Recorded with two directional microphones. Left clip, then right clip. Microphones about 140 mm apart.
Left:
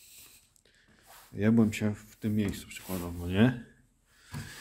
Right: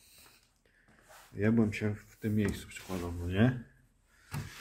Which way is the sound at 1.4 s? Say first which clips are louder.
Left 3 dB; 40° left (ahead or behind).